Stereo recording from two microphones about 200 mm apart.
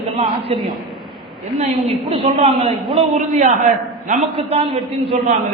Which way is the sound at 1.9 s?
30° right (ahead or behind).